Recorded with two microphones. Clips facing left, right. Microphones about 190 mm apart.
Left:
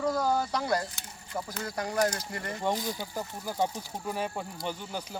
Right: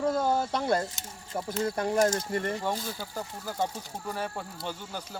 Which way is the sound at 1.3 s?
25° right (ahead or behind).